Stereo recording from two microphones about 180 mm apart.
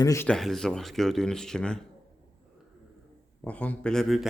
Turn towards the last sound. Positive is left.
turn(degrees=0)  # may be behind; listen again after turning